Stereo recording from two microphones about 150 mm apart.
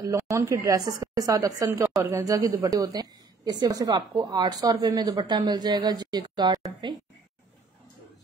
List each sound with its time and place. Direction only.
0.0 s a woman's voice: 20° right (ahead or behind)